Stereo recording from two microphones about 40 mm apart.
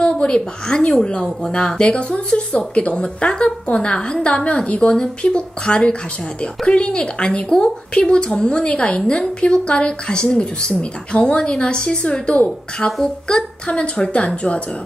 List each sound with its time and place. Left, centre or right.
0.0 s a woman's voice: left